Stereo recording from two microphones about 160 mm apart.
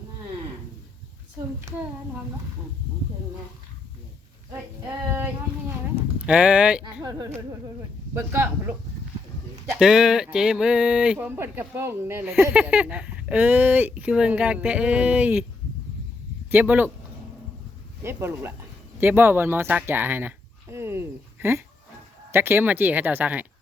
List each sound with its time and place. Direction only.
6.0 s speech: 5° right (ahead or behind)
7.0 s speech: 20° right (ahead or behind)
9.7 s speech: 5° right (ahead or behind)
16.5 s speech: 10° right (ahead or behind)
18.0 s speech: 15° right (ahead or behind)